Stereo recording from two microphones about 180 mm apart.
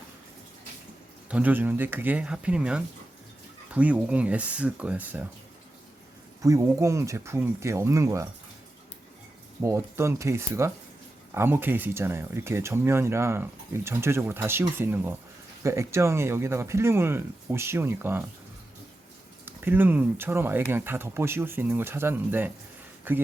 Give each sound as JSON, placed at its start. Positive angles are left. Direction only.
{"t": 1.3, "sound": "speech", "side_deg": -10}
{"t": 6.4, "sound": "speech", "side_deg": -20}
{"t": 9.6, "sound": "speech", "side_deg": -15}
{"t": 19.5, "sound": "speech", "side_deg": -10}